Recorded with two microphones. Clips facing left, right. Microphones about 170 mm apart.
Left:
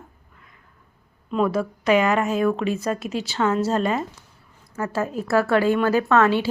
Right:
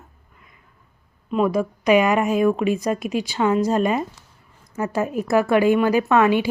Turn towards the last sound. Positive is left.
turn(degrees=-15)  # may be behind; listen again after turning